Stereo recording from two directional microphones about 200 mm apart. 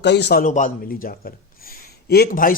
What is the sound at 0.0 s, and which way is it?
Speech, 60° left (ahead or behind).